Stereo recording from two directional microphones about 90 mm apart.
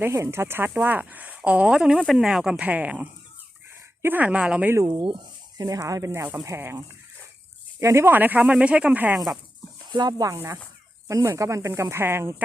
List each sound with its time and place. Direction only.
0.0 s speech: 30° right (ahead or behind); by 2.6 s 5° right (ahead or behind)
2.6 s speech: 15° right (ahead or behind)
5.5 s speech: 40° right (ahead or behind); by 9.1 s 15° right (ahead or behind)
9.1 s speech: 5° right (ahead or behind)
9.9 s speech: 50° right (ahead or behind)
10.3 s speech: 30° right (ahead or behind)